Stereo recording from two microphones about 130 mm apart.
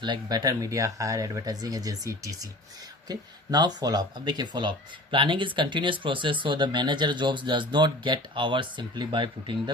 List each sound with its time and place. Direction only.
0.0 s speech: 30° right (ahead or behind)